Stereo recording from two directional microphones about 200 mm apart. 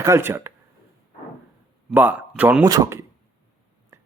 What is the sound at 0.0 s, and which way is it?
Speech, 10° right (ahead or behind).